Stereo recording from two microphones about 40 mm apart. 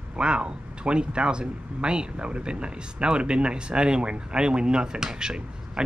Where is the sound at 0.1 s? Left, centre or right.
Right.